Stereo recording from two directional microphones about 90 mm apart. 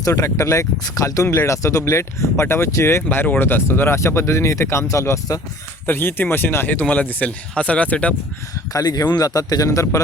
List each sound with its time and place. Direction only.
0.0 s speech: 35° left (ahead or behind)
5.8 s speech: 25° left (ahead or behind)
8.7 s speech: 45° left (ahead or behind)